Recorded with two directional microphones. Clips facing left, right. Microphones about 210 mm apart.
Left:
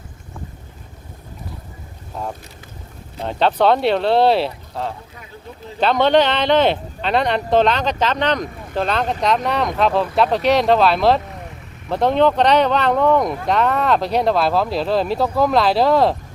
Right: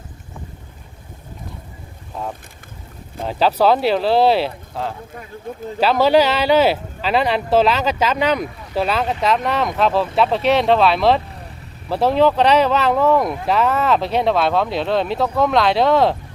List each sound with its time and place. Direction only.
3.2 s speech: 5° right (ahead or behind)
5.5 s speech: 50° right (ahead or behind)
5.8 s speech: 5° right (ahead or behind)